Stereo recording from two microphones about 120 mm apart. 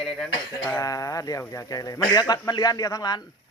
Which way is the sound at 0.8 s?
30° left (ahead or behind).